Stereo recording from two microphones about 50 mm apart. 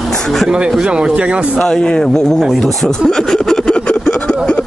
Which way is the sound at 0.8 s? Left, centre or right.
Centre.